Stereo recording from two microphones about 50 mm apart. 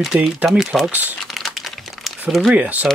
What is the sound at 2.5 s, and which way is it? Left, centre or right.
Speech, right.